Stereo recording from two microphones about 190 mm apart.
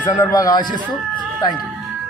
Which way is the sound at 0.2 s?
20° left (ahead or behind).